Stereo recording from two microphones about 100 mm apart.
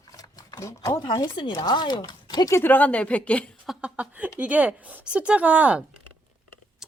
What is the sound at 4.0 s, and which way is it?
A woman's voice, 15° right (ahead or behind).